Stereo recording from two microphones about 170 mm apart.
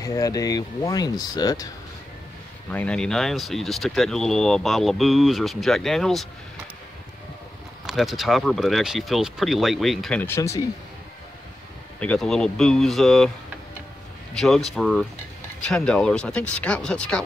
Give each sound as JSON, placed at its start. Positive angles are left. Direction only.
{"t": 0.0, "sound": "speech", "side_deg": 20}
{"t": 2.7, "sound": "speech", "side_deg": 5}
{"t": 7.8, "sound": "speech", "side_deg": 0}
{"t": 10.2, "sound": "speech", "side_deg": 15}
{"t": 12.0, "sound": "speech", "side_deg": 5}
{"t": 14.3, "sound": "speech", "side_deg": 0}